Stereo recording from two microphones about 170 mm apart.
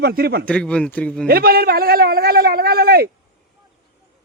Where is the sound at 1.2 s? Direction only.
60° right (ahead or behind).